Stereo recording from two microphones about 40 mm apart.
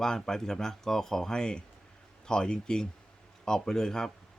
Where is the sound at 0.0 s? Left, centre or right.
Centre.